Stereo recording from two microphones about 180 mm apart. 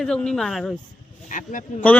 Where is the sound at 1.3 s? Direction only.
45° left (ahead or behind).